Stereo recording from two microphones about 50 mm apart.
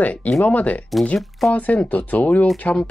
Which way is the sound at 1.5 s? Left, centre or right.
Left.